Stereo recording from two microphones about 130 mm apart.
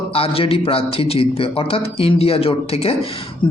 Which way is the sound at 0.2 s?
45° left (ahead or behind).